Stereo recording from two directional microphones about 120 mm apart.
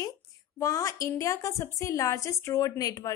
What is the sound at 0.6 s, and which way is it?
A woman's voice, 25° left (ahead or behind).